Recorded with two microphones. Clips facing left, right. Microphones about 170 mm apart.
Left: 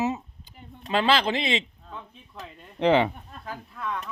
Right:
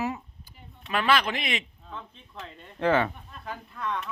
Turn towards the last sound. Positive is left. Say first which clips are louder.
# even
turn(degrees=0)  # may be behind; listen again after turning